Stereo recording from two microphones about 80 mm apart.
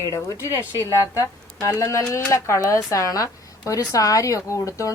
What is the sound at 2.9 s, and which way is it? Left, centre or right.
Speech, left.